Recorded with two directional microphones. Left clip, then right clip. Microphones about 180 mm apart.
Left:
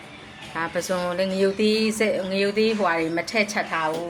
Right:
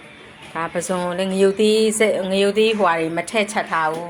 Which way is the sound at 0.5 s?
15° right (ahead or behind).